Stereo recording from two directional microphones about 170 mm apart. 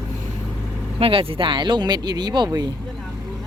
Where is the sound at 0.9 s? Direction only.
35° right (ahead or behind).